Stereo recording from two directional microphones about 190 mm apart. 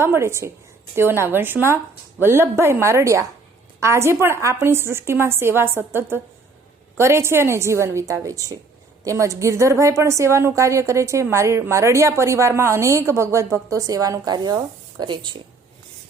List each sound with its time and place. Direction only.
0.0 s a woman's voice: 15° right (ahead or behind)